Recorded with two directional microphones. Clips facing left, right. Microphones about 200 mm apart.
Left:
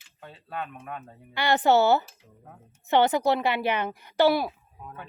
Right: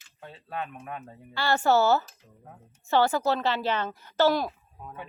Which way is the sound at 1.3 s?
20° left (ahead or behind).